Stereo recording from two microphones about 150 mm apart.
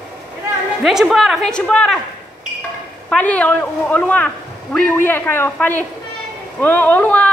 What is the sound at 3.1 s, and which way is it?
Speech, 10° left (ahead or behind).